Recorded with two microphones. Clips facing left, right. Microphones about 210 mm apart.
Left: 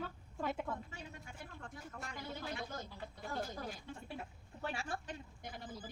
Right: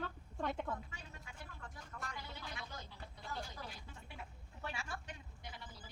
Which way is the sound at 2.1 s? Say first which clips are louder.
Left 6 dB; 50° left (ahead or behind).